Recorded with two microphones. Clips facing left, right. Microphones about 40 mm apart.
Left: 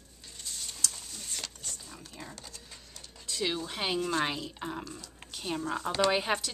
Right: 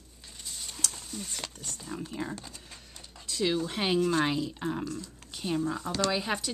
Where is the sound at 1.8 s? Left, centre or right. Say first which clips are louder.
Right 10 dB; right.